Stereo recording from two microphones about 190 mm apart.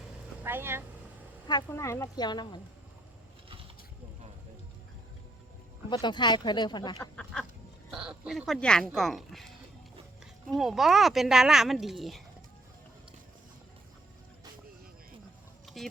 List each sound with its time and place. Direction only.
0.4 s speech: 10° right (ahead or behind)
1.5 s speech: 20° left (ahead or behind)
5.9 s speech: 25° left (ahead or behind)
7.0 s speech: 5° left (ahead or behind)
10.6 s speech: centre (ahead or behind)
15.6 s a sound: centre (ahead or behind)